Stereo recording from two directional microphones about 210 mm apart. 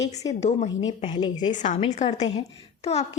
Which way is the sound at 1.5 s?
35° left (ahead or behind).